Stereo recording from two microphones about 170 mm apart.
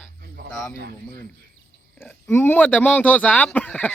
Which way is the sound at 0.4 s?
65° right (ahead or behind).